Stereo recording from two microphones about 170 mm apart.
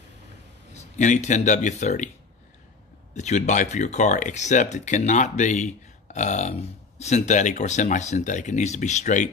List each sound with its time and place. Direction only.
0.7 s speech: 45° left (ahead or behind)
3.2 s speech: 45° left (ahead or behind)